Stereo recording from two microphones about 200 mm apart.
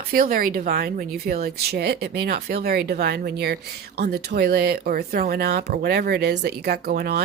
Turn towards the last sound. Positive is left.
turn(degrees=-50)  # may be behind; listen again after turning